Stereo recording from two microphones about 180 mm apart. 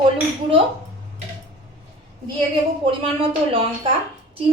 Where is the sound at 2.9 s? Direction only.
30° right (ahead or behind).